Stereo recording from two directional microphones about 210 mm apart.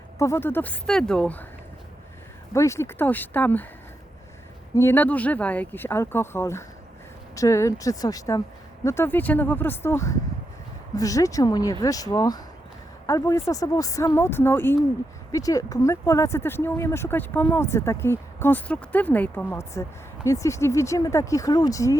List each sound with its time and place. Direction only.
0.2 s speech: 10° left (ahead or behind)
2.5 s speech: 15° left (ahead or behind)
4.7 s speech: 10° left (ahead or behind)